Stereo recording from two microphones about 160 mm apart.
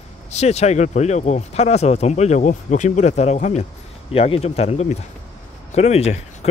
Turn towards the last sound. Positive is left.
turn(degrees=40)  # may be behind; listen again after turning